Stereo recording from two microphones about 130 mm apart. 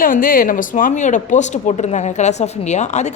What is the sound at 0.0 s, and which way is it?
A woman's voice, 90° left.